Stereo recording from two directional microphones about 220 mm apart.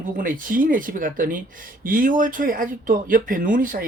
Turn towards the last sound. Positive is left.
turn(degrees=-40)  # may be behind; listen again after turning